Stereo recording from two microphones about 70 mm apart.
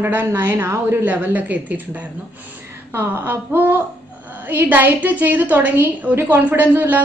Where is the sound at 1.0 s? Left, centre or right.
Right.